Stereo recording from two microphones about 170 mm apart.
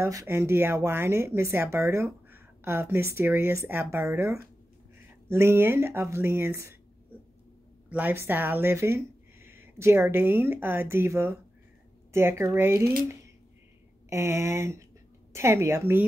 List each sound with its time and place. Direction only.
0.0 s speech: 20° right (ahead or behind)
14.0 s speech: 15° right (ahead or behind)